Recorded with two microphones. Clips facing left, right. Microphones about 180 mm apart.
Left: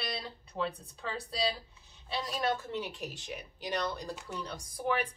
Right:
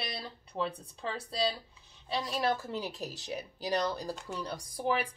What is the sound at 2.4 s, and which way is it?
A woman's voice, 35° right (ahead or behind).